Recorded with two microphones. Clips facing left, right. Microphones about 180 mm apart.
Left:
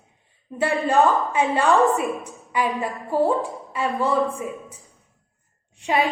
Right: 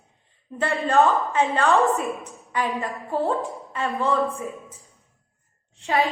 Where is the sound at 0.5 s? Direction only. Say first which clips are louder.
Left 1 dB; 10° left (ahead or behind).